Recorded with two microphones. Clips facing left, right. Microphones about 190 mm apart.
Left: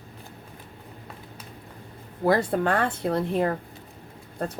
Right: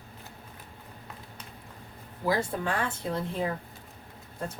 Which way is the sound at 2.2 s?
65° left (ahead or behind).